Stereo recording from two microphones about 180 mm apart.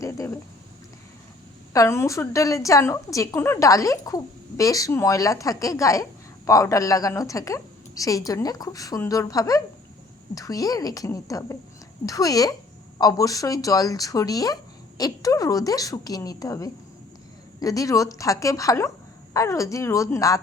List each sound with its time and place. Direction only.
0.0 s speech: 15° left (ahead or behind)
1.7 s a woman's voice: 15° left (ahead or behind)